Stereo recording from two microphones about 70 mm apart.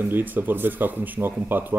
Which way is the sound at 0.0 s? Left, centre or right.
Right.